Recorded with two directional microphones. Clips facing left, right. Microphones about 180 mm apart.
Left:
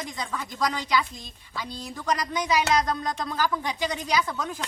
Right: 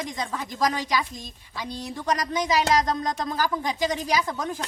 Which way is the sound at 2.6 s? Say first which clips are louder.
Right 2 dB; 35° right (ahead or behind).